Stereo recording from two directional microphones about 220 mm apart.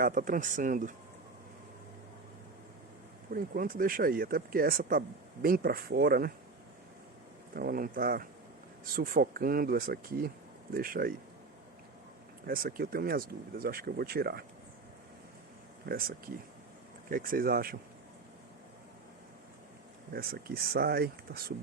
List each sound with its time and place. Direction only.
0.0 s speech: 40° right (ahead or behind)
3.3 s speech: 40° right (ahead or behind)
7.5 s speech: 40° right (ahead or behind)
12.5 s speech: 40° right (ahead or behind)
15.9 s speech: 40° right (ahead or behind)
20.1 s speech: 45° right (ahead or behind)